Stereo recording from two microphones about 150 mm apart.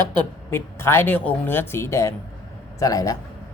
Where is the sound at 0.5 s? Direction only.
15° left (ahead or behind).